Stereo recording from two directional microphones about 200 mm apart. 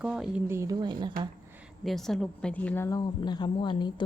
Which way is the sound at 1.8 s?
Centre (ahead or behind).